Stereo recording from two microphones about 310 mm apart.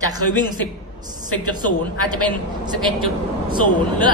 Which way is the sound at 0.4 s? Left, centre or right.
Centre.